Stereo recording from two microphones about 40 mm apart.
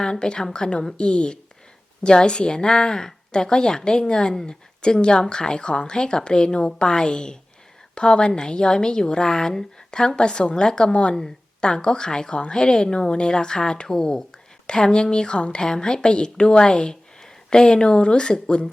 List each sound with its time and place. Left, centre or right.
0.0 s a woman's voice: left